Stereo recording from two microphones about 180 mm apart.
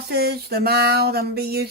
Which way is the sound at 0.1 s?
60° right (ahead or behind).